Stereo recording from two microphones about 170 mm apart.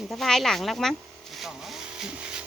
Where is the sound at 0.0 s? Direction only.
Centre (ahead or behind).